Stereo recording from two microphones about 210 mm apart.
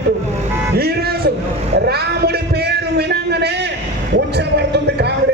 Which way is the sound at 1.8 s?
50° right (ahead or behind).